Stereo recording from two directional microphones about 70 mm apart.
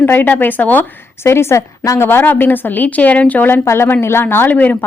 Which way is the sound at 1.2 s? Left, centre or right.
Left.